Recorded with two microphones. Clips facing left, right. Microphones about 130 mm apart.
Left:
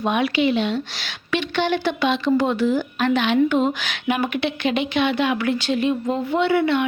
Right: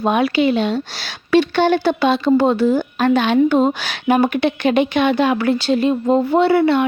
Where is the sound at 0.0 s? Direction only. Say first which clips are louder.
Right 4 dB; 40° right (ahead or behind).